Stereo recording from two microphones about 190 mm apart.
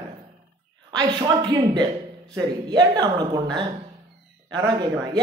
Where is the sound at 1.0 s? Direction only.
20° right (ahead or behind).